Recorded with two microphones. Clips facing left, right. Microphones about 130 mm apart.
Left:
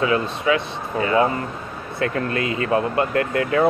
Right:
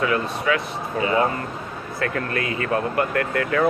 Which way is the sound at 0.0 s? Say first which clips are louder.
Left 2 dB; 25° left (ahead or behind).